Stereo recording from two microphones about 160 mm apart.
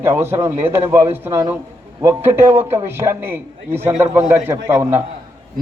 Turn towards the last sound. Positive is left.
turn(degrees=-15)  # may be behind; listen again after turning